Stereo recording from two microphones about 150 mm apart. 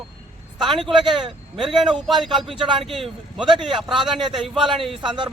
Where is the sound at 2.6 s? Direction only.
35° right (ahead or behind).